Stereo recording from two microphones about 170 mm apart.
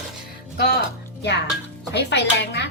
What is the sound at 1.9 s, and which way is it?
Speech, 90° left.